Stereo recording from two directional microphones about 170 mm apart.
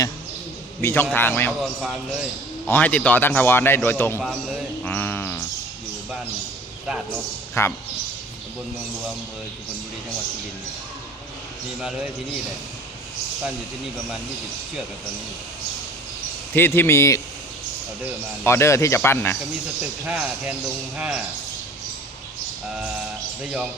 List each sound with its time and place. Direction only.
0.8 s speech: 15° left (ahead or behind)
1.6 s a man's voice: centre (ahead or behind)
2.6 s speech: 10° left (ahead or behind)
4.2 s a man's voice: centre (ahead or behind)
4.8 s a sound: 10° left (ahead or behind)
7.6 s speech: 15° left (ahead or behind)
11.8 s a man's voice: 5° right (ahead or behind)
16.6 s speech: 10° left (ahead or behind)
18.4 s speech: 15° left (ahead or behind)
20.1 s speech: 5° right (ahead or behind)
23.4 s a man's voice: 5° right (ahead or behind)